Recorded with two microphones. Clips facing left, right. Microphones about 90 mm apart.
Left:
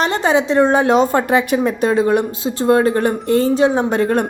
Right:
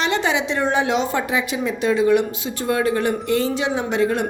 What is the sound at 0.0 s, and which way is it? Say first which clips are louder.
Speech: left 5 dB; 40° left (ahead or behind).